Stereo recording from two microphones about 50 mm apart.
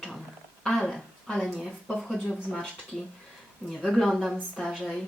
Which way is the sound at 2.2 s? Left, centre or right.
Centre.